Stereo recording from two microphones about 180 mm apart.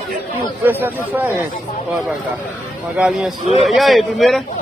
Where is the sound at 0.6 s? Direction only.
10° right (ahead or behind).